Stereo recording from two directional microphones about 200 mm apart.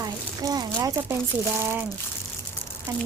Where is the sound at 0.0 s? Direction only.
20° right (ahead or behind).